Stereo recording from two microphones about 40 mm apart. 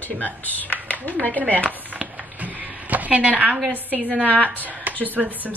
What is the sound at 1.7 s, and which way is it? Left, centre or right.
Speech, right.